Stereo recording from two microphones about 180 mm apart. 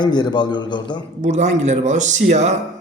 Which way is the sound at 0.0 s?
25° left (ahead or behind).